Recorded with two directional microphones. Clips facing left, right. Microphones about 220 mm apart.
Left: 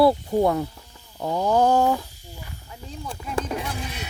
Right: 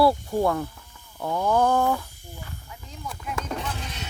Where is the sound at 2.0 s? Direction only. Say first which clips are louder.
Even; 55° right (ahead or behind).